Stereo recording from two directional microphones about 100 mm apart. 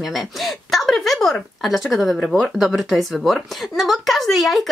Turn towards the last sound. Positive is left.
turn(degrees=0)  # may be behind; listen again after turning